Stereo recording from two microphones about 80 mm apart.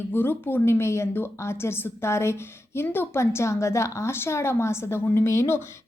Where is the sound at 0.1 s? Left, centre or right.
Left.